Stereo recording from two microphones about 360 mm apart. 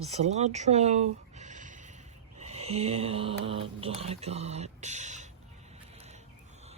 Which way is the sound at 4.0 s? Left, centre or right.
Centre.